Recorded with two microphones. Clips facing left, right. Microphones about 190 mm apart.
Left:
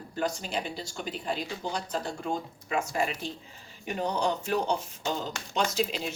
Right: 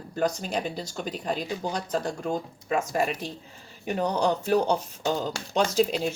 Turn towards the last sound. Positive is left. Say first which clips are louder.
# right 6 dB
turn(degrees=-40)  # may be behind; listen again after turning